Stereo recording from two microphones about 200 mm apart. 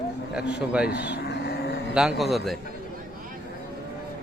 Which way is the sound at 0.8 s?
55° left (ahead or behind).